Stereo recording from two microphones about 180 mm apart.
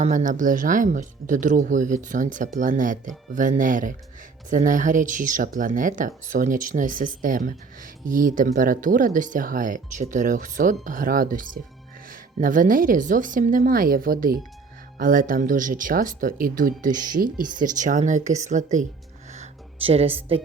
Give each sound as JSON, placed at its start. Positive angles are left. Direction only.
{"t": 0.0, "sound": "speech", "side_deg": -45}
{"t": 19.3, "sound": "music", "side_deg": -35}